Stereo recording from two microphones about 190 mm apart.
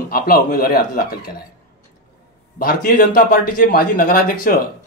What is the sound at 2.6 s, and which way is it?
A man's voice, 50° left (ahead or behind).